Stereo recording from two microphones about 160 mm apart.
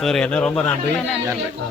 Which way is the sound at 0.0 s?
5° left (ahead or behind).